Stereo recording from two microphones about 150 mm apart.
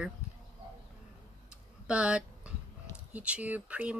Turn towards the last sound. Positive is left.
turn(degrees=-10)  # may be behind; listen again after turning